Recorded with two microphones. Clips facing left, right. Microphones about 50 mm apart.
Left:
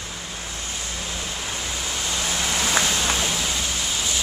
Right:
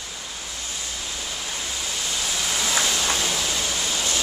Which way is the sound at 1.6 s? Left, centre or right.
Left.